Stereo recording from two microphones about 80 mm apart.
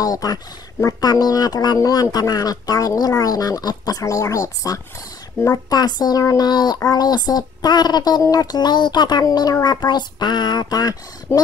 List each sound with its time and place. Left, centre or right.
0.0 s speech: left